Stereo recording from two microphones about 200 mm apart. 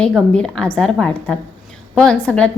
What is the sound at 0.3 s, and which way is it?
A woman's voice, 5° left (ahead or behind).